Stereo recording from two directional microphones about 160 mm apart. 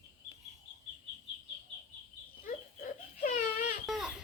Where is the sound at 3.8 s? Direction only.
5° right (ahead or behind).